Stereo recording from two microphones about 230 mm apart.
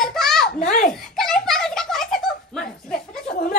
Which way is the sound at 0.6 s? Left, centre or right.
Left.